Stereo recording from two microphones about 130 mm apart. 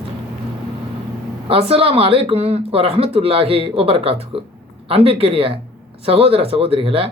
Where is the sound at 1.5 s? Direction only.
50° right (ahead or behind).